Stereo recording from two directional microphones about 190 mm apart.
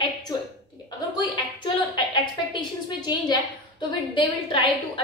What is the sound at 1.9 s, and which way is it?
A woman's voice, 25° left (ahead or behind).